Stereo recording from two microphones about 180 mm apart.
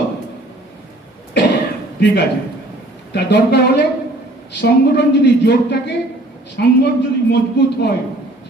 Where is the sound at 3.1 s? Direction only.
70° left (ahead or behind).